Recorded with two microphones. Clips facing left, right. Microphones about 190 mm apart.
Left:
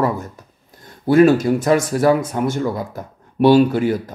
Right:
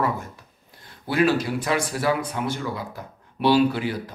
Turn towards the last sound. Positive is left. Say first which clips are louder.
# left 6 dB
turn(degrees=45)  # may be behind; listen again after turning